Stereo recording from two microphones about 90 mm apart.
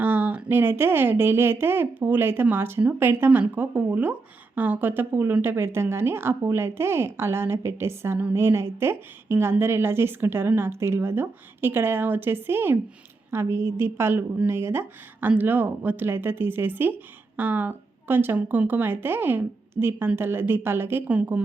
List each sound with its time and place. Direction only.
0.0 s a woman's voice: 20° right (ahead or behind)